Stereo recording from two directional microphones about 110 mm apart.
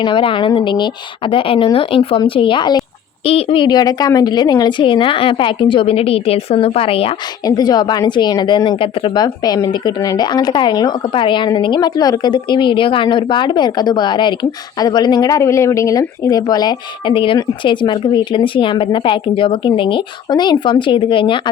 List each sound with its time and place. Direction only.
0.0 s a woman's voice: 50° left (ahead or behind)
3.2 s a woman's voice: 55° left (ahead or behind)
7.4 s speech: 40° left (ahead or behind); by 9.1 s 55° left (ahead or behind)
9.1 s a woman's voice: 35° left (ahead or behind)